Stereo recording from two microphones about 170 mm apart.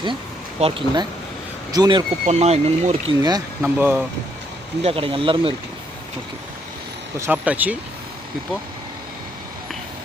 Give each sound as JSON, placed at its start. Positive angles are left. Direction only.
{"t": 0.6, "sound": "speech", "side_deg": -30}
{"t": 2.2, "sound": "speech", "side_deg": -40}
{"t": 3.2, "sound": "speech", "side_deg": -20}
{"t": 3.6, "sound": "speech", "side_deg": -10}
{"t": 4.8, "sound": "speech", "side_deg": -35}
{"t": 7.2, "sound": "speech", "side_deg": -10}